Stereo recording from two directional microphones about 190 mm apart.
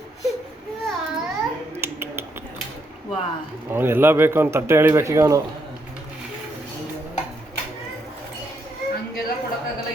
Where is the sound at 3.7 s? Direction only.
10° right (ahead or behind).